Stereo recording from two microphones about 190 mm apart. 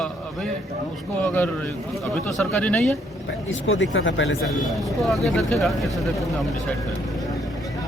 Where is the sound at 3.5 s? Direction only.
85° left.